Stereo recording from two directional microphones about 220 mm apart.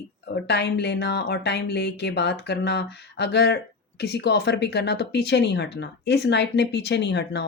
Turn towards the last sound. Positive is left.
turn(degrees=50)  # may be behind; listen again after turning